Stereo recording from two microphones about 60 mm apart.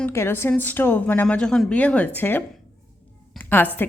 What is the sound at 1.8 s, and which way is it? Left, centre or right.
Speech, left.